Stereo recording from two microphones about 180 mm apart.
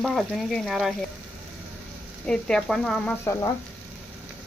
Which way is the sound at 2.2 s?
5° left (ahead or behind).